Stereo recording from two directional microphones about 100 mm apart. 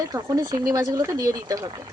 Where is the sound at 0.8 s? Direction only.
30° right (ahead or behind).